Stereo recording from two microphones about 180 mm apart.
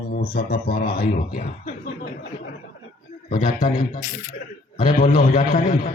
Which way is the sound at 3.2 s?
45° left (ahead or behind).